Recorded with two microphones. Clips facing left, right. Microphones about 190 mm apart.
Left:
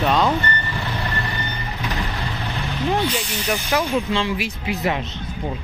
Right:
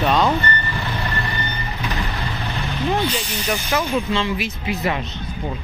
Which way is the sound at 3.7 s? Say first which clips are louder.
Even; 15° left (ahead or behind).